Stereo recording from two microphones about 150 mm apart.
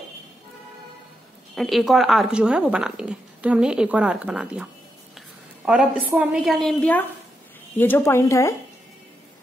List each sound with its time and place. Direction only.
1.5 s speech: centre (ahead or behind)
5.7 s speech: 5° right (ahead or behind); by 8.5 s 20° left (ahead or behind)